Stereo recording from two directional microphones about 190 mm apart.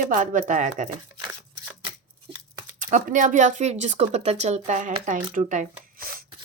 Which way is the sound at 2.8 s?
45° right (ahead or behind).